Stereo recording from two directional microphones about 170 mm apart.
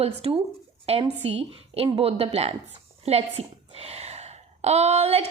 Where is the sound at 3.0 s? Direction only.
35° right (ahead or behind).